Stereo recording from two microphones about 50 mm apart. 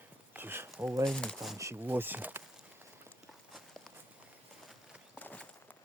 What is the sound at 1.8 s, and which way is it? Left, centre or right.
Speech, right.